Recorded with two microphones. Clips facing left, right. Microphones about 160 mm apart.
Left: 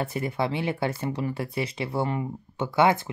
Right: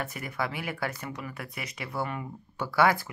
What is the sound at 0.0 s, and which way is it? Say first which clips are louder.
Speech: left 6 dB; 30° left (ahead or behind).